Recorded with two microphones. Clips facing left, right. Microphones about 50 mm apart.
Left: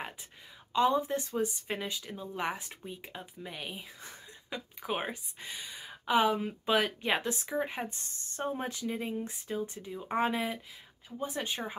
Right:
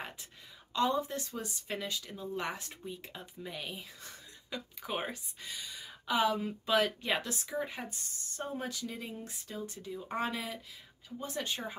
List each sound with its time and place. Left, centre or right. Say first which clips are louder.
0.7 s speech: left 4 dB; centre
5.4 s speech: left 2 dB; left